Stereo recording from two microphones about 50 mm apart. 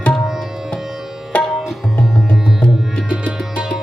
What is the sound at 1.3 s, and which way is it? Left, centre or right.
Tabla, left.